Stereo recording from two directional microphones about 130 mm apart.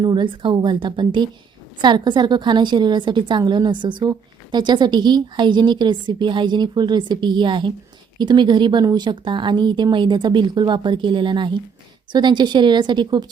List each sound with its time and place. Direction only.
0.0 s a woman's voice: 35° right (ahead or behind)